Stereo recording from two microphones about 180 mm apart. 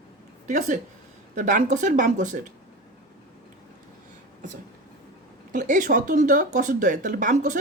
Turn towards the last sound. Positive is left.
turn(degrees=-45)  # may be behind; listen again after turning